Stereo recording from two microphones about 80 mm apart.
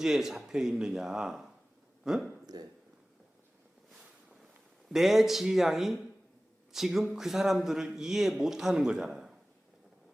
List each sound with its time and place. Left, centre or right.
0.0 s a man's voice: centre
2.5 s speech: right
4.9 s a man's voice: centre